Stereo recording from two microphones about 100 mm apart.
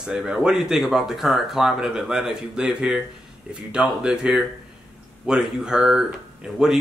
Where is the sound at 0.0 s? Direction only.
5° right (ahead or behind).